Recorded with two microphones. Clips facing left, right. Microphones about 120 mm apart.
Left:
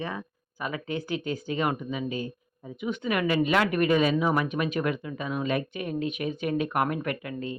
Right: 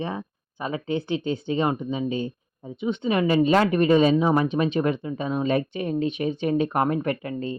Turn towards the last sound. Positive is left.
turn(degrees=-35)  # may be behind; listen again after turning